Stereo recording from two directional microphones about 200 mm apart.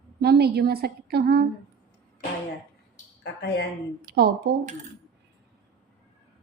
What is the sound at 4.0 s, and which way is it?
Speech, 50° right (ahead or behind).